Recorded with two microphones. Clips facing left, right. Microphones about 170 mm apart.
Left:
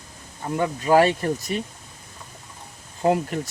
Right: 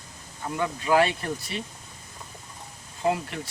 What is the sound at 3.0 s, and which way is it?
Speech, 45° left (ahead or behind).